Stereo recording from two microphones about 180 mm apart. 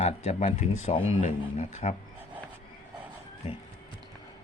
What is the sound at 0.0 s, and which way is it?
Speech, 40° left (ahead or behind).